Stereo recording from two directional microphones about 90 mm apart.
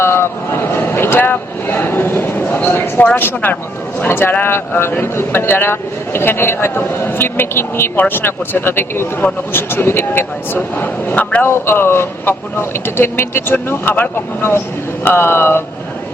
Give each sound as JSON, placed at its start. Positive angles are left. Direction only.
{"t": 0.0, "sound": "a sound", "side_deg": 25}
{"t": 3.2, "sound": "a man's voice", "side_deg": 20}
{"t": 11.5, "sound": "a man's voice", "side_deg": 25}